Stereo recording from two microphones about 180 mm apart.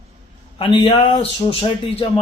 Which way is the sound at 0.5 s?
30° left (ahead or behind).